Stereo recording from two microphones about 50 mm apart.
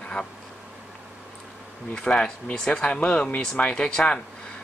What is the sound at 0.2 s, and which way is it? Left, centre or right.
Speech, centre.